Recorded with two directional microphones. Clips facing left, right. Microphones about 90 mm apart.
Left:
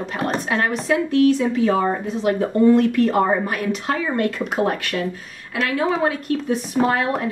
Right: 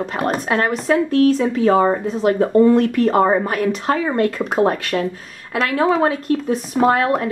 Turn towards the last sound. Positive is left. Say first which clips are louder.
# right 4 dB
turn(degrees=-40)  # may be behind; listen again after turning